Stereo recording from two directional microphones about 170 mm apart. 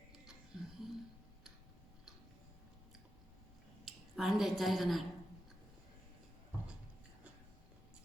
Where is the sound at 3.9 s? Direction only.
Centre (ahead or behind).